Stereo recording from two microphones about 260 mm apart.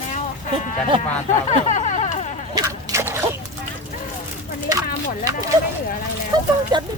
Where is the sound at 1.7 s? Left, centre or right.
Left.